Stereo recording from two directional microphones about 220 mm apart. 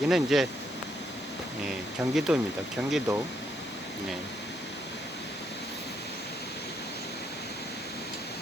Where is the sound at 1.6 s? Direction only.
Centre (ahead or behind).